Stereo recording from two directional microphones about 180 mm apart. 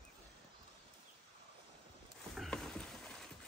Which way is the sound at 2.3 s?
Centre (ahead or behind).